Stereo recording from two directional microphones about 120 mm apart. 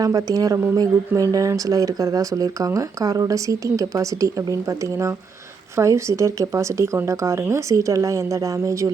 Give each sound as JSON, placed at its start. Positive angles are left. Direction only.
{"t": 0.0, "sound": "speech", "side_deg": -30}